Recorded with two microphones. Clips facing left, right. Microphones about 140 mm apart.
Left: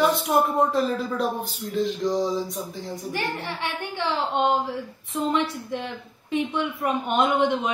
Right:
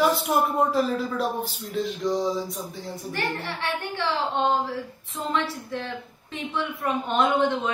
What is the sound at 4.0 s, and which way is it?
A man's voice, 15° left (ahead or behind).